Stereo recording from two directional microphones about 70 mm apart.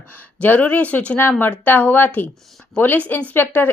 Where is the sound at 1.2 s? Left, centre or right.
Left.